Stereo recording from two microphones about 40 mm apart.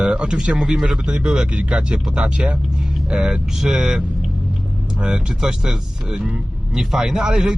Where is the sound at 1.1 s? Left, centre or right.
Right.